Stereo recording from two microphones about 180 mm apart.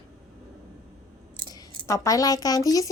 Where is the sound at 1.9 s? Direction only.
20° left (ahead or behind).